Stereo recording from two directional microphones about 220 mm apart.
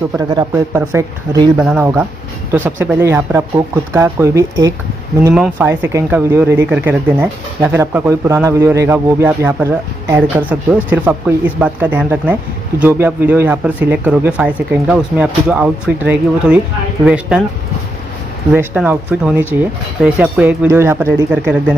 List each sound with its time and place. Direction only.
0.3 s speech: 15° right (ahead or behind)
18.5 s speech: 5° right (ahead or behind)